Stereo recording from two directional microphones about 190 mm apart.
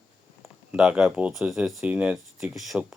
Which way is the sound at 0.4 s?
5° right (ahead or behind).